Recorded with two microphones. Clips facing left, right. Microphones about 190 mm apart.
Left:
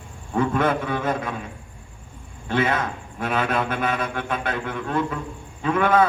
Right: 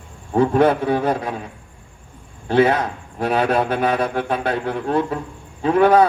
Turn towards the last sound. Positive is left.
turn(degrees=-35)  # may be behind; listen again after turning